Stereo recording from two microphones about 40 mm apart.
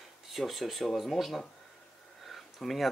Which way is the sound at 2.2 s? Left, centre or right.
Centre.